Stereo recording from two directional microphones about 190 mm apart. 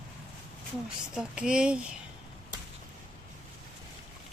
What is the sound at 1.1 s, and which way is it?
Speech, 5° right (ahead or behind).